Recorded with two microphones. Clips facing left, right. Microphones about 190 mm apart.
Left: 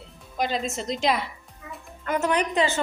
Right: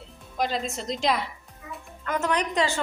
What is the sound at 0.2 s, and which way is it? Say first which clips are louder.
Music: left 1 dB; centre (ahead or behind).